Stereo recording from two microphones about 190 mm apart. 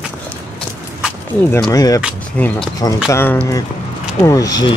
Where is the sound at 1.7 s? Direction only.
20° left (ahead or behind).